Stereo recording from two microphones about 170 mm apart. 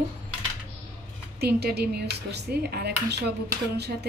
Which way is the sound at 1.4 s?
70° right (ahead or behind).